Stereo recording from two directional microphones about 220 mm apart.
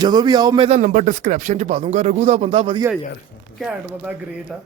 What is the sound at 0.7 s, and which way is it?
Speech, 35° right (ahead or behind).